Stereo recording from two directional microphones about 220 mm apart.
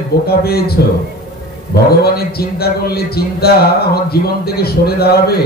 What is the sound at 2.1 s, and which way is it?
Speech, 45° left (ahead or behind).